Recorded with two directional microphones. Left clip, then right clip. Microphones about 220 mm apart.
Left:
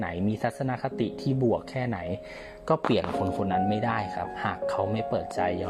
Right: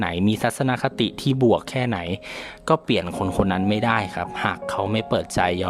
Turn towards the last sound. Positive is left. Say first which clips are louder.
# right 6 dB
turn(degrees=-30)  # may be behind; listen again after turning